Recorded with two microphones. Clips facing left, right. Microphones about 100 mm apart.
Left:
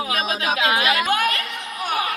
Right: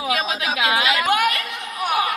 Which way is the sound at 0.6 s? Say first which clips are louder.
Right 1 dB; 20° right (ahead or behind).